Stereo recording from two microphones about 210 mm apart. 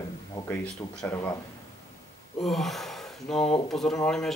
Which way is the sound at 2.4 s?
Centre (ahead or behind).